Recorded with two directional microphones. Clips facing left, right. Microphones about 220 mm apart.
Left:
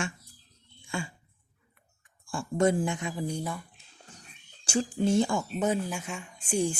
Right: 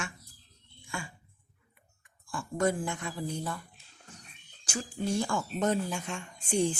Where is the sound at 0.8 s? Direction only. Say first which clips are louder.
Left 5 dB; 25° left (ahead or behind).